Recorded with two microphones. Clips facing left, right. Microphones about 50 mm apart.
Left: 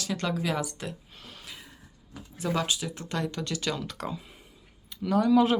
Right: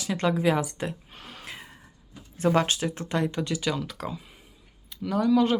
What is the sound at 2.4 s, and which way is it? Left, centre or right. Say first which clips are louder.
Speech: right 6 dB; right.